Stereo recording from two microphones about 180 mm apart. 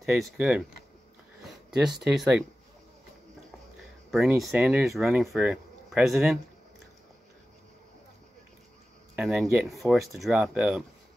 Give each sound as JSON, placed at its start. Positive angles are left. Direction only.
{"t": 0.1, "sound": "speech", "side_deg": 0}
{"t": 1.8, "sound": "speech", "side_deg": 0}
{"t": 4.4, "sound": "speech", "side_deg": -5}
{"t": 9.1, "sound": "speech", "side_deg": 0}